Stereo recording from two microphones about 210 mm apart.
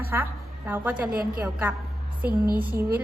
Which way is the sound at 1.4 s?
10° right (ahead or behind).